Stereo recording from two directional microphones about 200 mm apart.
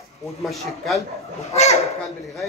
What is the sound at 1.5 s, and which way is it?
Speech, 35° left (ahead or behind).